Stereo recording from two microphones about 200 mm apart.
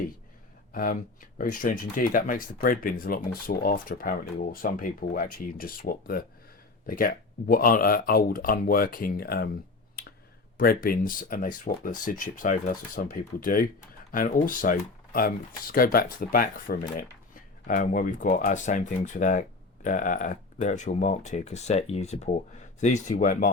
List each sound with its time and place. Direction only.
0.7 s speech: 45° left (ahead or behind)
10.6 s speech: 45° left (ahead or behind)